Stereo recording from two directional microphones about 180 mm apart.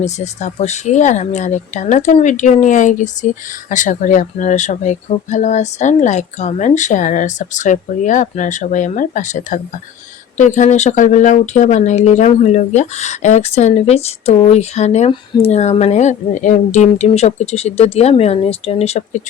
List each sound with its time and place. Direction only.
0.0 s speech: 40° left (ahead or behind)